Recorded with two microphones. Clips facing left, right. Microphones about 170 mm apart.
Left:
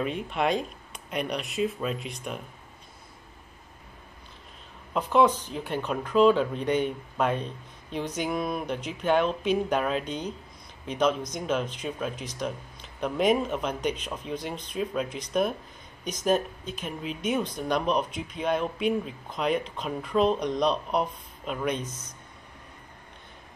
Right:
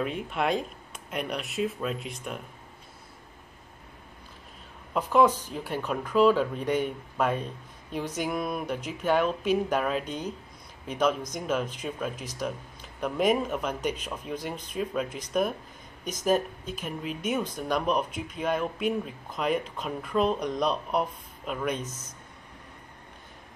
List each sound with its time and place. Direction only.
0.0 s speech: centre (ahead or behind)
4.9 s speech: 5° right (ahead or behind)